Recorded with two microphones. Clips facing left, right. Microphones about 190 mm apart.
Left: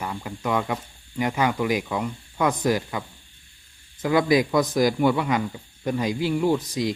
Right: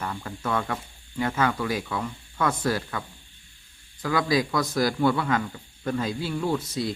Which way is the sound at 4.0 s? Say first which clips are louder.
Left 4 dB; 20° left (ahead or behind).